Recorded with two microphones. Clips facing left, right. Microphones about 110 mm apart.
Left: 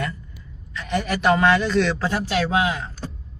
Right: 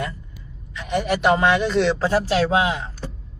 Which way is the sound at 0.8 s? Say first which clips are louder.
Right 2 dB; 15° right (ahead or behind).